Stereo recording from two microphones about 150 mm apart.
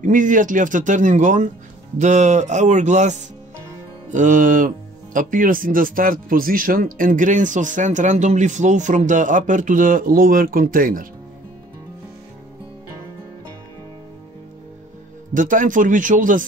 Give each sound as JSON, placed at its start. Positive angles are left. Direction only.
{"t": 0.0, "sound": "speech", "side_deg": -60}
{"t": 15.3, "sound": "speech", "side_deg": -60}